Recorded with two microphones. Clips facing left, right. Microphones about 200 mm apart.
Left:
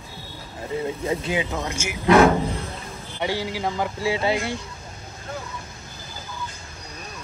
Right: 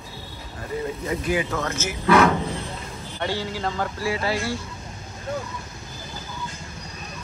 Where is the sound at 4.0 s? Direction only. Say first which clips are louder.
Left 3 dB; 25° left (ahead or behind).